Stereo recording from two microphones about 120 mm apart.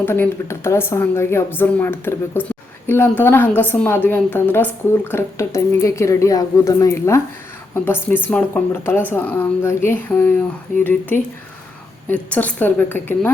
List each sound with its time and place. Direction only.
0.0 s a woman's voice: 20° left (ahead or behind)
12.0 s speech: 10° left (ahead or behind)